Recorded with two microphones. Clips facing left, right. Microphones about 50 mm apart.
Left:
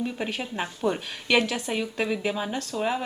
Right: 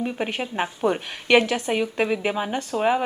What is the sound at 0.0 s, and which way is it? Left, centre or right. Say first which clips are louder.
A woman's voice: right 3 dB; right.